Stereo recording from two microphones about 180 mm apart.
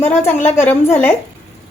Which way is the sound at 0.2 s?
10° left (ahead or behind).